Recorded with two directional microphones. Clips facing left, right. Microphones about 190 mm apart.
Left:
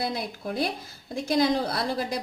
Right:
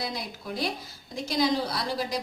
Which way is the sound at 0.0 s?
55° left (ahead or behind).